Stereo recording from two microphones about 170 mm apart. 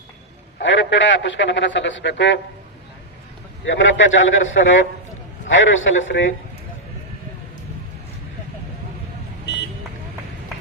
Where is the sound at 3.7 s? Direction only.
90° left.